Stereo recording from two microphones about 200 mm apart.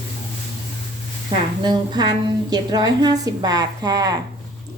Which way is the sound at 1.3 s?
20° right (ahead or behind).